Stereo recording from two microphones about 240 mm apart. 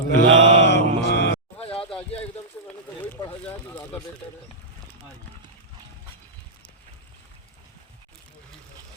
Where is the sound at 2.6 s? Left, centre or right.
Centre.